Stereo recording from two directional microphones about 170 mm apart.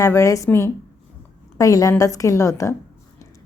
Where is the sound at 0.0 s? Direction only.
20° left (ahead or behind).